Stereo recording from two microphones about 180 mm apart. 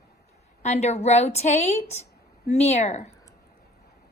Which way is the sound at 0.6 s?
40° left (ahead or behind).